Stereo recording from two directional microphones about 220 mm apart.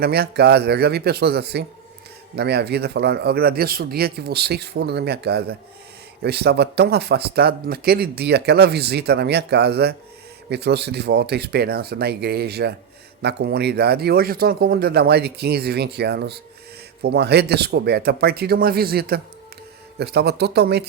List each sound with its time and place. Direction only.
0.0 s speech: 45° right (ahead or behind)